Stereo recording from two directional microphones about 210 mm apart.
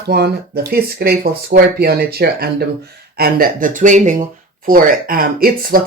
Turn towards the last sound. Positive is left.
turn(degrees=-45)  # may be behind; listen again after turning